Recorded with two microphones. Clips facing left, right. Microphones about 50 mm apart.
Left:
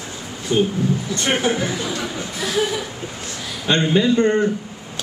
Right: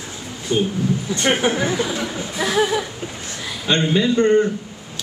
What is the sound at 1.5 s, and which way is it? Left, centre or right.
Speech, right.